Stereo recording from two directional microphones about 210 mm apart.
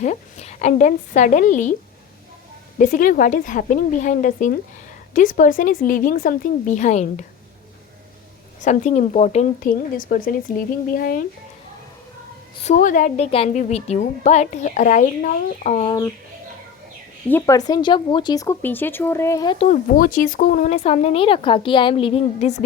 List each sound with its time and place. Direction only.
0.0 s a woman's voice: 35° left (ahead or behind)
2.7 s a woman's voice: 40° left (ahead or behind)
8.6 s a woman's voice: 35° left (ahead or behind)
12.6 s a woman's voice: 35° left (ahead or behind)
17.2 s speech: 10° left (ahead or behind)
19.5 s a woman's voice: 40° left (ahead or behind)